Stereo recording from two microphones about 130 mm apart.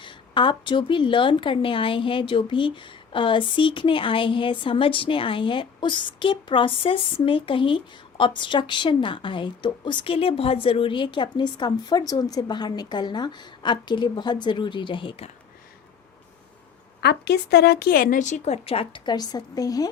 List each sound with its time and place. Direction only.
0.0 s a woman's voice: 40° left (ahead or behind)
18.0 s a woman's voice: 80° left; by 19.9 s 30° left (ahead or behind)